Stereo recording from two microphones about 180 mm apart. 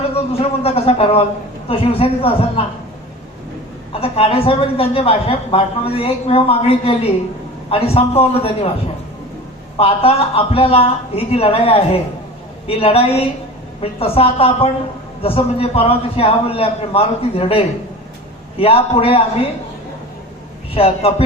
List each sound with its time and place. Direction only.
0.3 s a woman's voice: 35° left (ahead or behind)
3.9 s a woman's voice: 35° left (ahead or behind)
9.7 s a woman's voice: 30° left (ahead or behind)
20.7 s a woman's voice: 35° left (ahead or behind)